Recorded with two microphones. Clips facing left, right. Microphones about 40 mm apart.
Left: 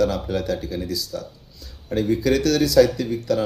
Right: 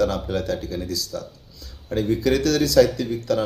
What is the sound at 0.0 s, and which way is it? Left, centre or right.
Speech, centre.